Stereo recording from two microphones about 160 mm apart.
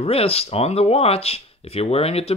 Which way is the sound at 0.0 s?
40° left (ahead or behind).